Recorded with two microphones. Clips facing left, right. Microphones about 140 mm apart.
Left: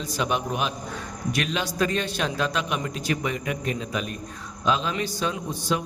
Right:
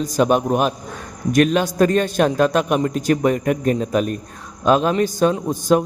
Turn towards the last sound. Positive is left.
turn(degrees=-45)  # may be behind; listen again after turning